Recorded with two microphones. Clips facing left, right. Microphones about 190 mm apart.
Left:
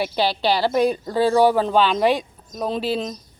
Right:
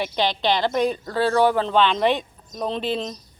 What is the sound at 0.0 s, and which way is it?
Speech, 10° left (ahead or behind).